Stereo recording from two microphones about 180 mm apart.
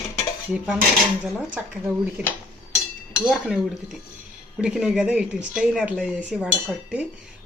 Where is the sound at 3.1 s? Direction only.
5° right (ahead or behind).